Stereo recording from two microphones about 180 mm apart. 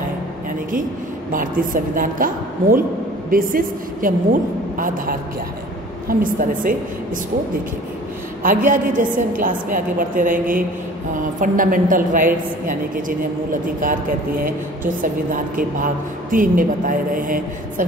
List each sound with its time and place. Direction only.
1.3 s a woman's voice: 50° right (ahead or behind)
8.4 s a woman's voice: 45° right (ahead or behind)
13.5 s a woman's voice: 50° right (ahead or behind)
15.0 s a woman's voice: 50° right (ahead or behind)